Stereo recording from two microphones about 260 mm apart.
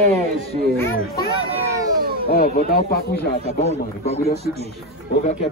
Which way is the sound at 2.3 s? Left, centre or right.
Left.